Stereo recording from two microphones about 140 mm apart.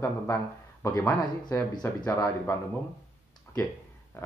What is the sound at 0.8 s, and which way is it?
Speech, 25° left (ahead or behind).